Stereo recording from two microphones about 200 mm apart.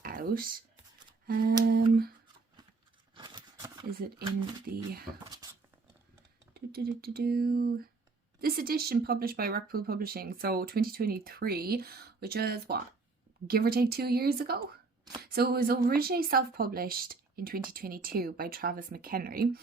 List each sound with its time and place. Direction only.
0.0 s a sound: 45° right (ahead or behind)
1.6 s speech: 50° right (ahead or behind)
3.2 s a sound: 25° right (ahead or behind)
4.7 s speech: 50° right (ahead or behind)
5.2 s speech: 20° right (ahead or behind)
6.5 s speech: 50° right (ahead or behind)